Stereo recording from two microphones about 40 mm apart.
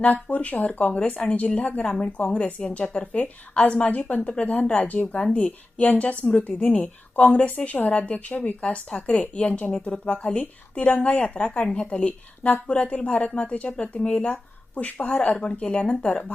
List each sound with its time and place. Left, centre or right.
0.0 s a woman's voice: left
2.6 s a woman's voice: left
2.9 s a woman's voice: left
4.3 s a woman's voice: left
5.3 s a woman's voice: left
5.8 s a woman's voice: left